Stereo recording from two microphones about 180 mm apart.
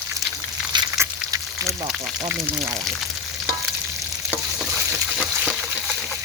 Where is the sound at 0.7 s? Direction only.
20° right (ahead or behind).